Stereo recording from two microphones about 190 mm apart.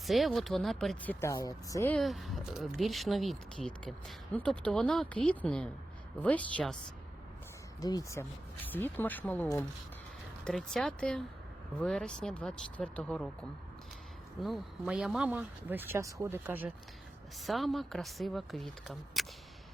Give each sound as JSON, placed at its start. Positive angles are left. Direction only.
{"t": 0.0, "sound": "speech", "side_deg": 0}
{"t": 2.0, "sound": "speech", "side_deg": 0}
{"t": 7.8, "sound": "speech", "side_deg": 20}
{"t": 14.4, "sound": "speech", "side_deg": 0}